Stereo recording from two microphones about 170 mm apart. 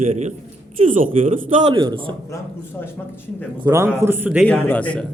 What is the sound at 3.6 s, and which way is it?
Speech, 15° right (ahead or behind).